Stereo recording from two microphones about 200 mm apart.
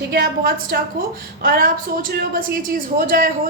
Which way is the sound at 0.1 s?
50° right (ahead or behind).